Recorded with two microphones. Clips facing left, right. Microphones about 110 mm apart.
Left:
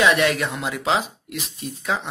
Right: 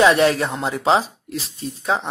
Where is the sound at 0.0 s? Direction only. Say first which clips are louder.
Right 4 dB; 35° right (ahead or behind).